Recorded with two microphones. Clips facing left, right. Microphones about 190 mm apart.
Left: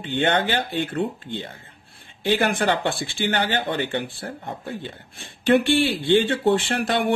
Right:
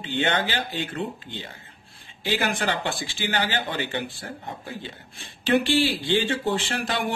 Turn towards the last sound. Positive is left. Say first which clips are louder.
# left 5 dB
turn(degrees=60)  # may be behind; listen again after turning